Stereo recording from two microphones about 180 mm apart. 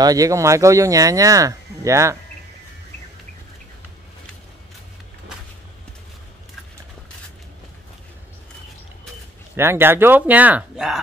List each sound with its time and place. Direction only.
0.0 s speech: 20° right (ahead or behind)
9.6 s speech: 15° right (ahead or behind)